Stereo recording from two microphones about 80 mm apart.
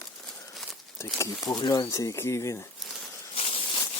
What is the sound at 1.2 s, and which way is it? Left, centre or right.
Speech, left.